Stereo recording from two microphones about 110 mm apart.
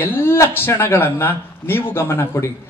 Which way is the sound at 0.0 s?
20° left (ahead or behind).